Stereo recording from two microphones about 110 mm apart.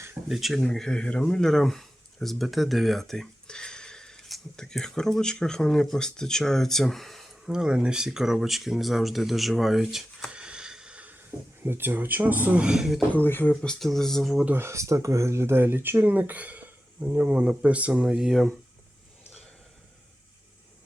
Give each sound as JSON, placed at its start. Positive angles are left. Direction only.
{"t": 0.3, "sound": "speech", "side_deg": 0}
{"t": 13.1, "sound": "speech", "side_deg": 15}
{"t": 14.4, "sound": "speech", "side_deg": -20}